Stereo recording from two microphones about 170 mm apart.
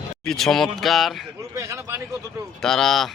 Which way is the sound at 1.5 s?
15° right (ahead or behind).